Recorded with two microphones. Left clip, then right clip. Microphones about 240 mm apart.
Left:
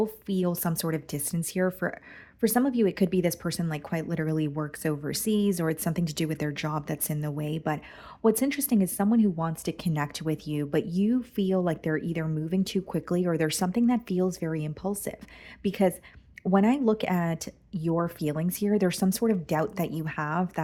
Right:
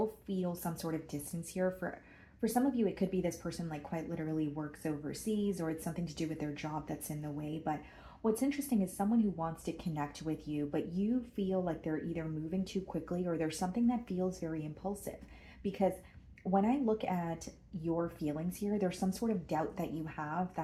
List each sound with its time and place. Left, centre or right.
0.3 s speech: left